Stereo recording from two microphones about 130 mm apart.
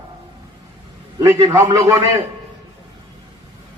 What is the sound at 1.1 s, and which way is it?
Speech, 25° right (ahead or behind).